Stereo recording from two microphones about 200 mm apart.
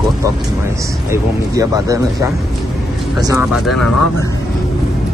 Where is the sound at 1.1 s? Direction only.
15° right (ahead or behind).